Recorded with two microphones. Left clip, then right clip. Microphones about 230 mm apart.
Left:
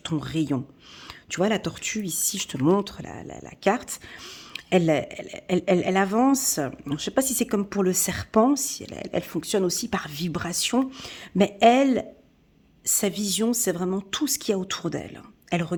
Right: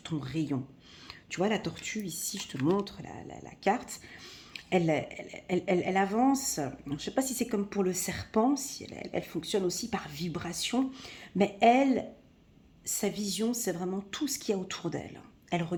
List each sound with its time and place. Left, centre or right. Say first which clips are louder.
0.0 s speech: left 7 dB; left